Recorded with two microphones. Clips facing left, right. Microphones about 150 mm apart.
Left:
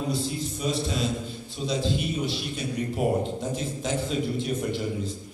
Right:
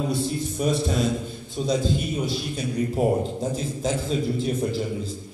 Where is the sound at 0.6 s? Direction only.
50° right (ahead or behind).